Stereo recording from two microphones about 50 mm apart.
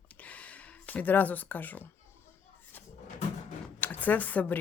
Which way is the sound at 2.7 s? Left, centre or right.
Left.